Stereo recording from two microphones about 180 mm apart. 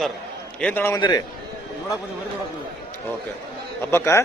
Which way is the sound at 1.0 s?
20° left (ahead or behind).